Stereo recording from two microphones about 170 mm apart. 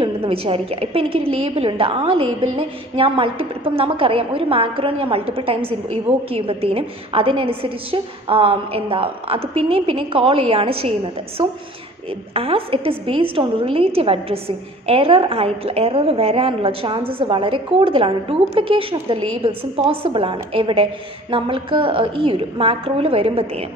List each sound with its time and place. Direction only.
0.0 s a woman's voice: 35° right (ahead or behind)
12.4 s a woman's voice: 35° right (ahead or behind)